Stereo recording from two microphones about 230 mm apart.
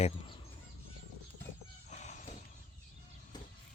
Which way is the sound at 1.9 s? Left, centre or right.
Left.